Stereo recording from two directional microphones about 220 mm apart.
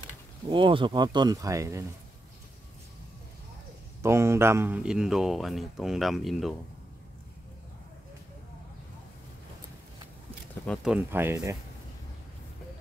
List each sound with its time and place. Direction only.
0.5 s speech: 20° right (ahead or behind)
4.0 s speech: 10° right (ahead or behind)
10.7 s speech: centre (ahead or behind)